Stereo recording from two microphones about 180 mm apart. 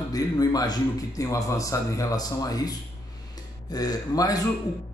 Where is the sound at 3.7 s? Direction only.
20° left (ahead or behind).